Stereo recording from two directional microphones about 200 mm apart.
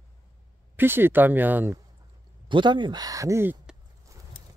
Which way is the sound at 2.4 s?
25° right (ahead or behind).